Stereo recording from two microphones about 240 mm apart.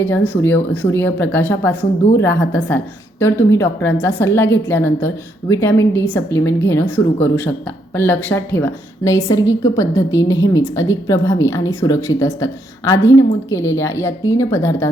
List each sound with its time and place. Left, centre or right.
0.0 s a woman's voice: centre